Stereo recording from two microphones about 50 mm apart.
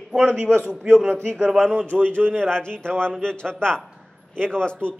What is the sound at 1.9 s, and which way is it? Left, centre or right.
Speech, right.